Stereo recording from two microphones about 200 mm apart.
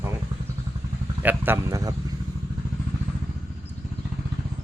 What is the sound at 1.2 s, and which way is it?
Speech, 10° right (ahead or behind).